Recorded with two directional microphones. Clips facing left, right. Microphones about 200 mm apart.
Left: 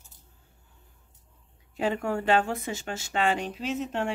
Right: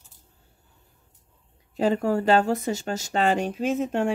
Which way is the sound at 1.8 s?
35° right (ahead or behind).